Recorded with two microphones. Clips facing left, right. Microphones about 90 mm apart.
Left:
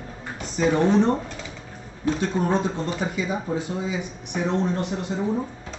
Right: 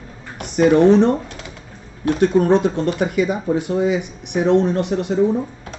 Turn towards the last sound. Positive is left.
turn(degrees=-65)  # may be behind; listen again after turning